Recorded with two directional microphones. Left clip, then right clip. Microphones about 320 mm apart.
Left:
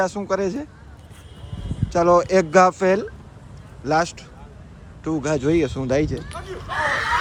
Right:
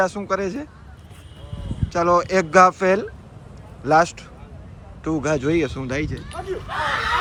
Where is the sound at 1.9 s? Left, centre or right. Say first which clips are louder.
Left 2 dB; centre.